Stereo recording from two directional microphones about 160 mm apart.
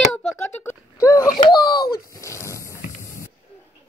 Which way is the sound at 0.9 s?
20° left (ahead or behind).